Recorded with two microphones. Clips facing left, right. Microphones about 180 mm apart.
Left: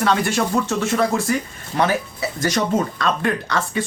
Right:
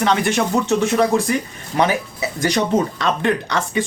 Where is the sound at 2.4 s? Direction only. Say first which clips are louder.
Right 2 dB; 15° right (ahead or behind).